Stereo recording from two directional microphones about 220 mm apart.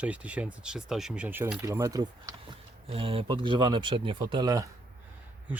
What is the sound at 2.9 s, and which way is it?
Speech, 25° right (ahead or behind).